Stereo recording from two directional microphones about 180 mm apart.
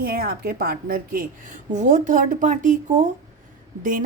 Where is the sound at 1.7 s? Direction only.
40° right (ahead or behind).